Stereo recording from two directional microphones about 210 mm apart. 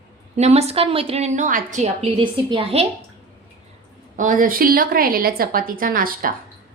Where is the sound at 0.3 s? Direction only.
30° right (ahead or behind).